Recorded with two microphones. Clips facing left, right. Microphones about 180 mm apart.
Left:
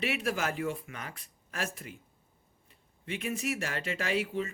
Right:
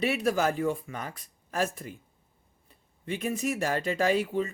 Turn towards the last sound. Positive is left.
turn(degrees=-40)  # may be behind; listen again after turning